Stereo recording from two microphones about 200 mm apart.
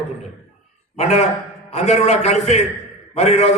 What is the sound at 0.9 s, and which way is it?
A man's voice, 35° left (ahead or behind).